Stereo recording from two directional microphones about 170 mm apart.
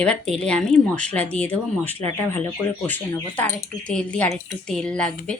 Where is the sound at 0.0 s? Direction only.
5° left (ahead or behind).